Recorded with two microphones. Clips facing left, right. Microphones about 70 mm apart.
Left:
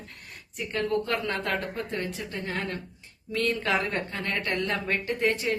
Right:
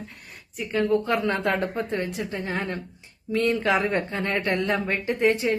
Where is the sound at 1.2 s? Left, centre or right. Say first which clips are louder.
Right 5 dB; centre.